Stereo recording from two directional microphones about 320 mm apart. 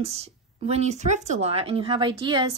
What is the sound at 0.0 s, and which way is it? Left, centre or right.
Speech, centre.